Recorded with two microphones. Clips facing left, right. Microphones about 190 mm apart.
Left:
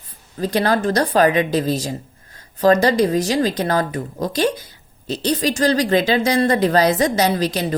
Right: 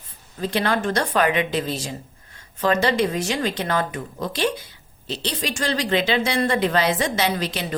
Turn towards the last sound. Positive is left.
turn(degrees=40)  # may be behind; listen again after turning